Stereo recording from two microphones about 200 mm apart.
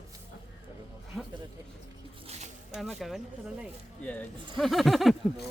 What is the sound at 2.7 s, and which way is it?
Speech, centre (ahead or behind).